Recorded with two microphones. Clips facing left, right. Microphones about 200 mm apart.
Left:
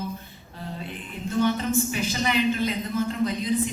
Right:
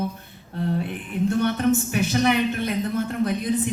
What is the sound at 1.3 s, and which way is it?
A woman's voice, 60° right (ahead or behind).